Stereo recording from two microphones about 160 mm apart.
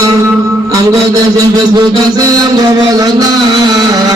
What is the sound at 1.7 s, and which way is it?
Music, 25° right (ahead or behind).